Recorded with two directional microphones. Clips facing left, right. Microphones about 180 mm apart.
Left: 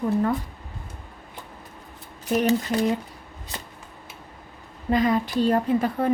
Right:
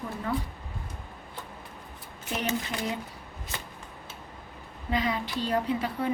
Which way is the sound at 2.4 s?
40° left (ahead or behind).